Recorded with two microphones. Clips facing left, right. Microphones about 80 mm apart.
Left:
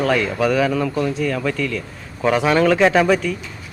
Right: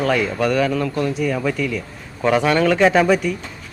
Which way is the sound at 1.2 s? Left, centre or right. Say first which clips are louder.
Even; centre.